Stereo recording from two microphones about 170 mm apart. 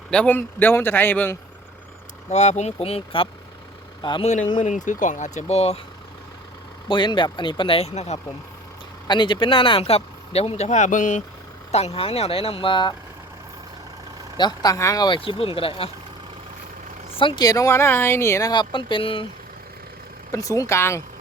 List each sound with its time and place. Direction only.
0.1 s a man's voice: 10° left (ahead or behind)
2.3 s speech: 40° left (ahead or behind)
4.6 s speech: 45° left (ahead or behind)
6.8 s speech: 30° left (ahead or behind)
9.0 s speech: 25° left (ahead or behind)
14.3 s speech: 25° left (ahead or behind)
17.2 s speech: 25° left (ahead or behind)
20.3 s a man's voice: 20° left (ahead or behind)